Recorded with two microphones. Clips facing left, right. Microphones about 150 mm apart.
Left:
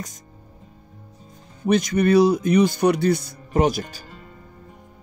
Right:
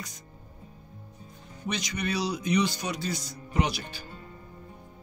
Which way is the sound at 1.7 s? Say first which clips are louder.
Left 14 dB; 50° left (ahead or behind).